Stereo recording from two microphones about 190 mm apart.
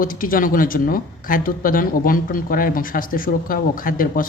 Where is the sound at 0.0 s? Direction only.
45° left (ahead or behind).